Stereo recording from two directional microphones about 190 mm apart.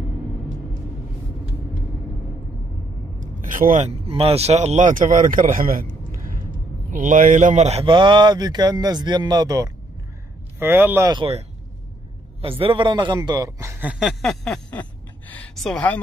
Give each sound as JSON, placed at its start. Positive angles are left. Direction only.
{"t": 3.2, "sound": "speech", "side_deg": -45}
{"t": 6.9, "sound": "speech", "side_deg": -45}
{"t": 12.4, "sound": "a man's voice", "side_deg": -30}